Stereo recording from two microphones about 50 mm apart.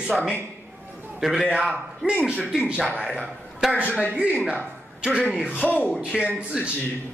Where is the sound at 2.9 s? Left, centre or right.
Right.